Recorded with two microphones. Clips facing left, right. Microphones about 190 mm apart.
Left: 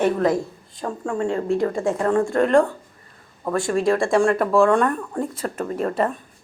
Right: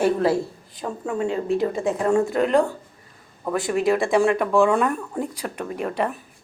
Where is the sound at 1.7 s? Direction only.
15° right (ahead or behind).